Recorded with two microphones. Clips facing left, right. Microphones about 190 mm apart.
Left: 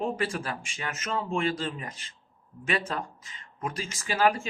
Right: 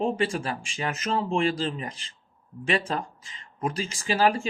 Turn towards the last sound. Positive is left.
turn(degrees=-30)  # may be behind; listen again after turning